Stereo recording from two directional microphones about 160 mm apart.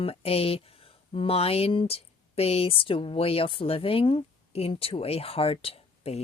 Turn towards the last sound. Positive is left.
turn(degrees=40)  # may be behind; listen again after turning